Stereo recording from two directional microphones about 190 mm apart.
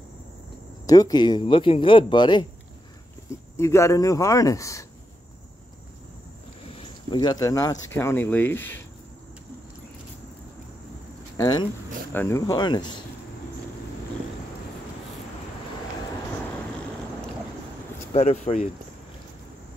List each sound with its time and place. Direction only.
0.8 s speech: 20° left (ahead or behind)
3.5 s a man's voice: 15° left (ahead or behind)
6.7 s a sound: 25° left (ahead or behind)
7.9 s a man's voice: 10° left (ahead or behind)
11.3 s speech: 20° left (ahead or behind)
18.1 s speech: 35° left (ahead or behind)